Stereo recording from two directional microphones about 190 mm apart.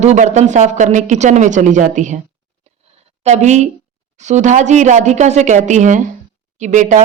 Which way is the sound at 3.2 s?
35° right (ahead or behind).